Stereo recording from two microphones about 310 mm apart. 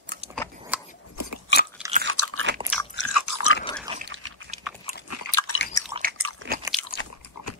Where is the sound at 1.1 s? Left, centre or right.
Left.